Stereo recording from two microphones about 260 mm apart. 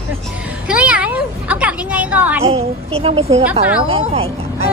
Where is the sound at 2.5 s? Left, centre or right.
Right.